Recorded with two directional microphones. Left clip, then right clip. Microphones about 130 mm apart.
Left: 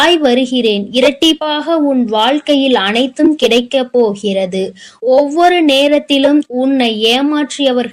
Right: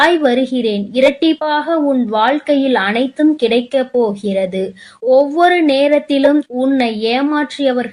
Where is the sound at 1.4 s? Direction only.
20° left (ahead or behind).